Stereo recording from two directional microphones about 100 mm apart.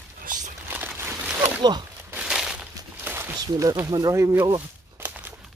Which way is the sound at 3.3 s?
40° right (ahead or behind).